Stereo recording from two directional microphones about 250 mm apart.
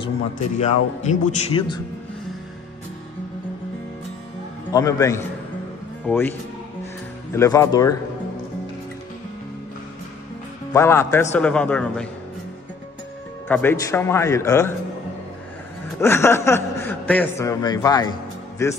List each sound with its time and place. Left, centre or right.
0.6 s speech: left
4.7 s speech: centre
7.3 s speech: centre
10.7 s speech: centre
13.5 s speech: centre
16.0 s a man's voice: centre